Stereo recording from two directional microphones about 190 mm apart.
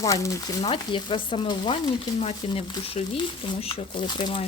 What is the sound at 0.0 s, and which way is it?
Frying, 15° left (ahead or behind).